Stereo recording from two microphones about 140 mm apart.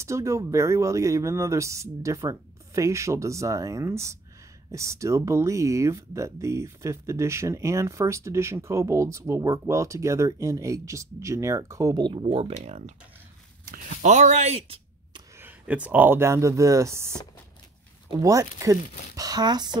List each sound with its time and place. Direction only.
0.0 s speech: 20° right (ahead or behind); by 14.8 s 50° right (ahead or behind)
15.3 s speech: 10° right (ahead or behind); by 19.8 s 30° right (ahead or behind)